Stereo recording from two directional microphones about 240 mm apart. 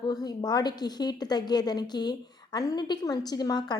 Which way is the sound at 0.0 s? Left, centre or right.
Centre.